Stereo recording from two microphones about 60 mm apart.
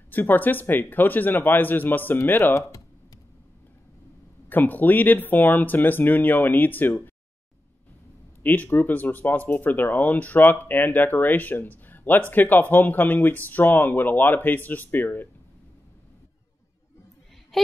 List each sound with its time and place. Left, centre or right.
0.1 s speech: left
4.5 s speech: left
8.4 s speech: left